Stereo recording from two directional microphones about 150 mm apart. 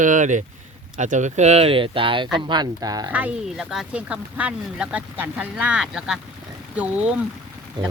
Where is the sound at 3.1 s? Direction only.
5° right (ahead or behind).